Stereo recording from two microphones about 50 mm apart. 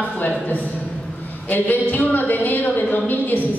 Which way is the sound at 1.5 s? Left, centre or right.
Left.